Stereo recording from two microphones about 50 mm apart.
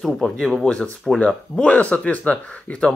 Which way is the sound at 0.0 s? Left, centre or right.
Centre.